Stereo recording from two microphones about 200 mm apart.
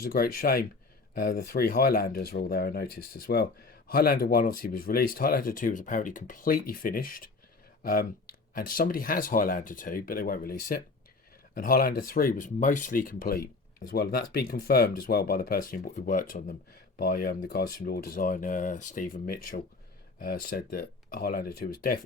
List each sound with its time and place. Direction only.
0.0 s speech: 50° left (ahead or behind)